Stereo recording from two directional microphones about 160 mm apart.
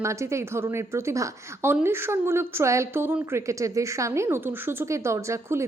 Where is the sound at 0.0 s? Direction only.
20° right (ahead or behind).